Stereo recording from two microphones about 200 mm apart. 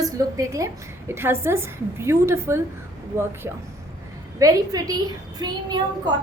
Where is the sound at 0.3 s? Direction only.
15° right (ahead or behind).